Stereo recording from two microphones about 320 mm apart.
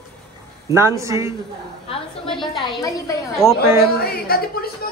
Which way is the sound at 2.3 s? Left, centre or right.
Centre.